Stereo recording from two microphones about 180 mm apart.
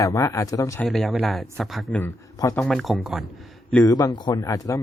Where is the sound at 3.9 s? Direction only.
25° left (ahead or behind).